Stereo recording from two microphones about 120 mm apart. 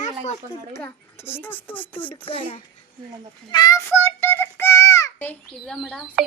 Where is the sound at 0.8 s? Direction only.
20° left (ahead or behind).